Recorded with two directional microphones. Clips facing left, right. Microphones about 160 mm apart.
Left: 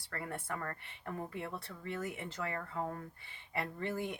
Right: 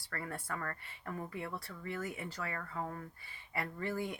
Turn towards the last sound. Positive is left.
turn(degrees=20)  # may be behind; listen again after turning